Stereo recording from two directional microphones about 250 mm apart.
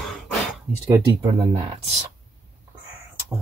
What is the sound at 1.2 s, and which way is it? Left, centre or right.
Speech, right.